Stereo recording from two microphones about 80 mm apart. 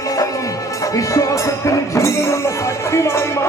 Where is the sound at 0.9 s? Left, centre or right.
Left.